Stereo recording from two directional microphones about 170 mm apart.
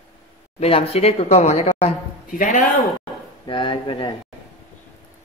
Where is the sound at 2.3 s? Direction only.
50° left (ahead or behind).